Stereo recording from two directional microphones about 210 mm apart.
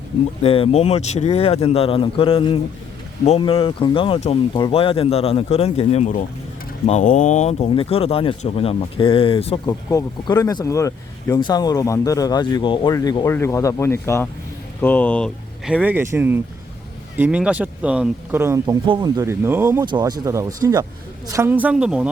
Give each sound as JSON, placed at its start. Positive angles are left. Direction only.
{"t": 0.4, "sound": "a man's voice", "side_deg": 25}